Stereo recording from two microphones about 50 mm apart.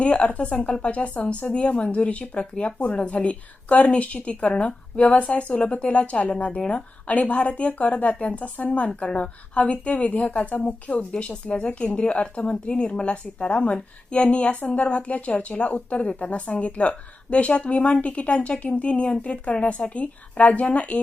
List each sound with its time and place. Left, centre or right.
0.0 s a woman's voice: left